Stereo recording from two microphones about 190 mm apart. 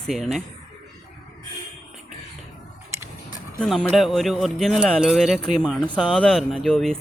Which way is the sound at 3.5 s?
Centre (ahead or behind).